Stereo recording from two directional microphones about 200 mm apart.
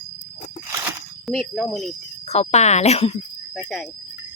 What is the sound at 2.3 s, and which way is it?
Speech, 30° left (ahead or behind).